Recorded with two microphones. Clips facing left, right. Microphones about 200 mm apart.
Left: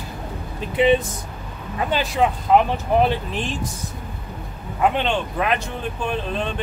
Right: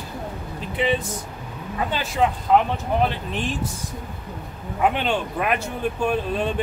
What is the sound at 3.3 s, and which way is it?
Speech, centre (ahead or behind).